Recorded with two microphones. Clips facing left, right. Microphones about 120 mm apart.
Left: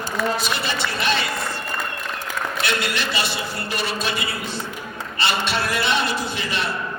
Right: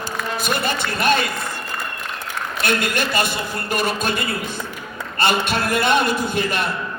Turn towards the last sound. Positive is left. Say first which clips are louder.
# right 4 dB
turn(degrees=-50)  # may be behind; listen again after turning